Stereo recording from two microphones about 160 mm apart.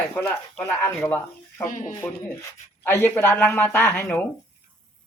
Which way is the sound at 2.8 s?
15° left (ahead or behind).